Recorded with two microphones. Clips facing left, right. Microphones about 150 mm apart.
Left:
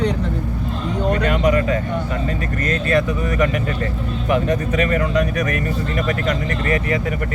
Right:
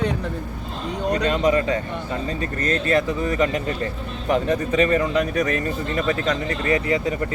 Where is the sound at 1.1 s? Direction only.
25° right (ahead or behind).